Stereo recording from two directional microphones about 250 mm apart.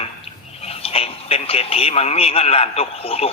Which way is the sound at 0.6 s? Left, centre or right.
Left.